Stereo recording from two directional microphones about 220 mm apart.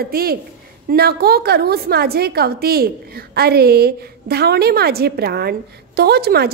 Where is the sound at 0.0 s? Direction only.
45° right (ahead or behind).